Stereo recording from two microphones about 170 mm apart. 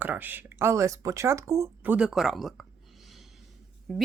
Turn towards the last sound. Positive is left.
turn(degrees=0)  # may be behind; listen again after turning